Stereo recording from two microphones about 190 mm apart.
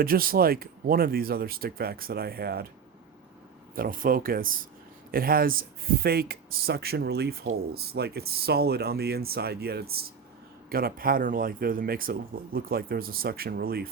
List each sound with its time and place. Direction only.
0.0 s speech: 50° right (ahead or behind)
3.8 s speech: 50° right (ahead or behind)